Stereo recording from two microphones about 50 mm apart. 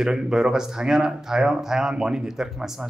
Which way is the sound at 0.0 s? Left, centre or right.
Centre.